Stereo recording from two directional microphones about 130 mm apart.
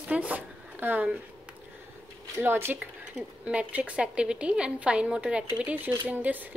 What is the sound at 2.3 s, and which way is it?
Speech, 20° right (ahead or behind).